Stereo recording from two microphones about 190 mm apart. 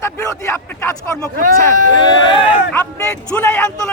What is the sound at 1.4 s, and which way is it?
Speech, 45° right (ahead or behind).